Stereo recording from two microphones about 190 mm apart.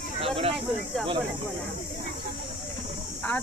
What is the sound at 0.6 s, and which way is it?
Snake, centre (ahead or behind).